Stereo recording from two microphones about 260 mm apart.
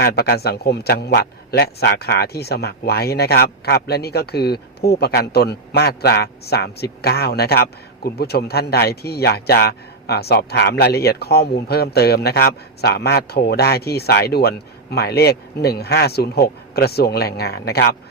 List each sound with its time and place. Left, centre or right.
0.0 s a man's voice: left